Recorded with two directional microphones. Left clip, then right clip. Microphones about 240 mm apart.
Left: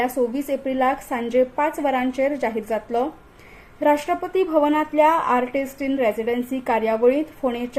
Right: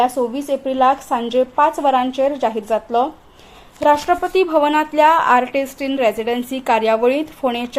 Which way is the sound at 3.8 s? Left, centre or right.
Right.